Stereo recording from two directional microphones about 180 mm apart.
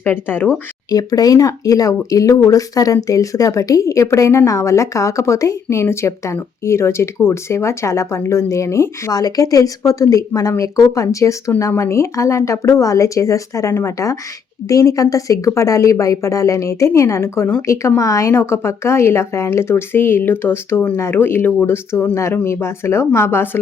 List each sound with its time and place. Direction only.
0.0 s speech: 10° left (ahead or behind)